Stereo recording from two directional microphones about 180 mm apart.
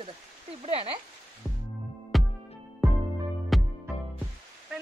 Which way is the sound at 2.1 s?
Centre (ahead or behind).